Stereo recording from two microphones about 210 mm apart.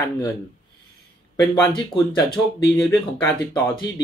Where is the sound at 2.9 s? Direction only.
15° left (ahead or behind).